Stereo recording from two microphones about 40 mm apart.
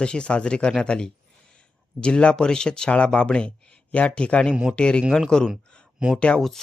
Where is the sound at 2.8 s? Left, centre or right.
Left.